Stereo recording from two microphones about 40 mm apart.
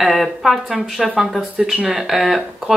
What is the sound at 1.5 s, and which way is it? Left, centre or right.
Speech, centre.